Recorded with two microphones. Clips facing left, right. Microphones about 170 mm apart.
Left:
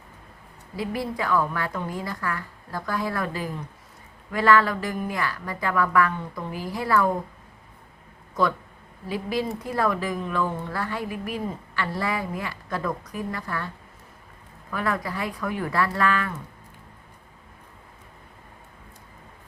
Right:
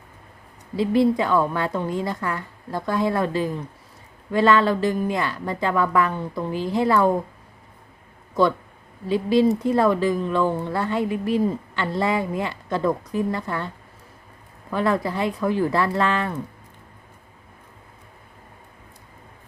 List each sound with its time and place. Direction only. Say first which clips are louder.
0.8 s speech: right 10 dB; 25° right (ahead or behind)
9.0 s speech: right 9 dB; 25° right (ahead or behind)
14.7 s speech: right 6 dB; 25° right (ahead or behind)